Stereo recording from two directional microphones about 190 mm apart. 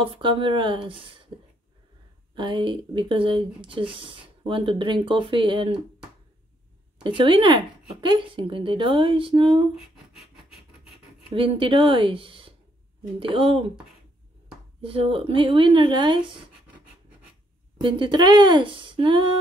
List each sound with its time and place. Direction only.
0.0 s speech: 30° right (ahead or behind)
2.3 s speech: 25° right (ahead or behind)
7.0 s speech: 25° right (ahead or behind)
9.8 s a sound: centre (ahead or behind)
11.3 s speech: 25° right (ahead or behind)
14.8 s speech: 30° right (ahead or behind)
17.7 s speech: 25° right (ahead or behind)